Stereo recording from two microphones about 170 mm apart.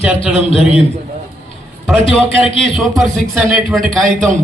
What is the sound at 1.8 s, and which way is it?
A man's voice, centre (ahead or behind).